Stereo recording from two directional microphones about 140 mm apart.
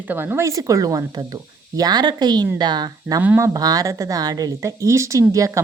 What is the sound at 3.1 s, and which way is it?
Speech, 15° right (ahead or behind).